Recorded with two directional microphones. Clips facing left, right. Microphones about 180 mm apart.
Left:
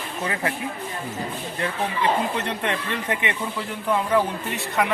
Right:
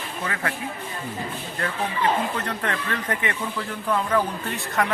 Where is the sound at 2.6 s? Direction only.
15° left (ahead or behind).